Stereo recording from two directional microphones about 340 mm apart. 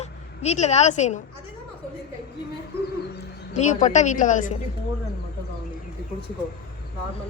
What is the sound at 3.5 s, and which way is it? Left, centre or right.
Speech, left.